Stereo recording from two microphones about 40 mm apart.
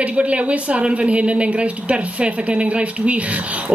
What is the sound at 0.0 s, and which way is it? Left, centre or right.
A woman's voice, right.